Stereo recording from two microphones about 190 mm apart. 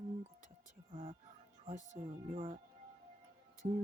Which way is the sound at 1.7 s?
40° right (ahead or behind).